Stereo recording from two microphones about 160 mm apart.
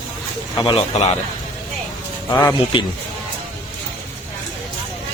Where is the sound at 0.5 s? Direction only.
30° left (ahead or behind).